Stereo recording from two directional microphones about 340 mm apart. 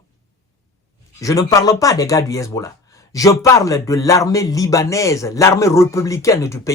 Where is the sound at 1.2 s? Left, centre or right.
Centre.